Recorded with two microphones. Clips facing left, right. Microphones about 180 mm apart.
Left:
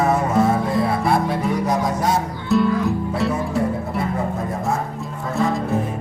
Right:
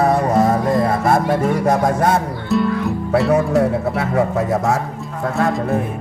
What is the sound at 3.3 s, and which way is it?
Speech, 75° right (ahead or behind).